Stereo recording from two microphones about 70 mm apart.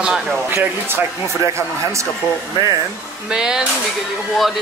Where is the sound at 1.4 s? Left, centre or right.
Right.